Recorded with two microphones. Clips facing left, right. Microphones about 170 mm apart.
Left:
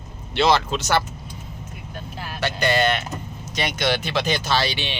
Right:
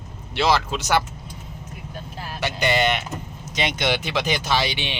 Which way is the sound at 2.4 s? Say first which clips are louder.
Left 1 dB; 15° right (ahead or behind).